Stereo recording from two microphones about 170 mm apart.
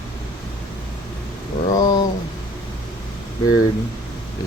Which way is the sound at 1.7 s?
20° left (ahead or behind).